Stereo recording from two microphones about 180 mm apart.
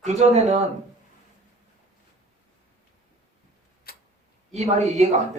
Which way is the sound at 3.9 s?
55° left (ahead or behind).